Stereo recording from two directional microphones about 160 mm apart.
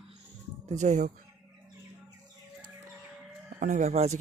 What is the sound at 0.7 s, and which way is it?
Speech, 50° right (ahead or behind).